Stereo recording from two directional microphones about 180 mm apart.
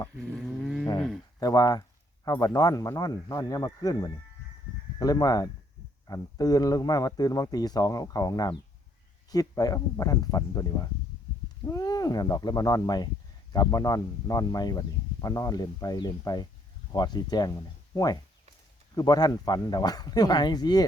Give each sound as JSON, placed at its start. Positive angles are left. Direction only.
{"t": 0.2, "sound": "livestock", "side_deg": 5}
{"t": 0.9, "sound": "speech", "side_deg": 0}
{"t": 1.4, "sound": "speech", "side_deg": 20}